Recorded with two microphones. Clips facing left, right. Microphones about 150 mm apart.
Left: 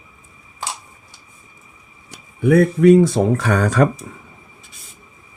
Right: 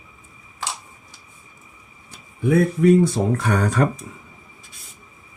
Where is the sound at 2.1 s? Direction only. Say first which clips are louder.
Left 4 dB; 70° left (ahead or behind).